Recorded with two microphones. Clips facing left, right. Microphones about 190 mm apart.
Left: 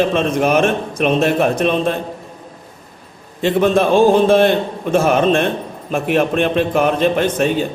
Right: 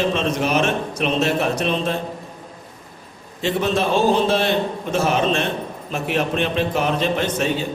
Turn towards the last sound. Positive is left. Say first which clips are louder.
# left 5 dB
turn(degrees=55)  # may be behind; listen again after turning